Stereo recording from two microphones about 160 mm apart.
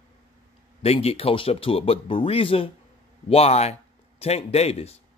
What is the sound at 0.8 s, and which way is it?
A man's voice, 40° left (ahead or behind).